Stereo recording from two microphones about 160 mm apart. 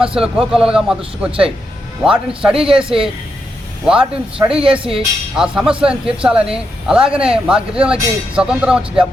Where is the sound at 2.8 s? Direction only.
35° right (ahead or behind).